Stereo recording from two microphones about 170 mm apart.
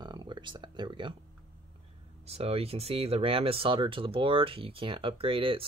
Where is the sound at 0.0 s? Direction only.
25° right (ahead or behind).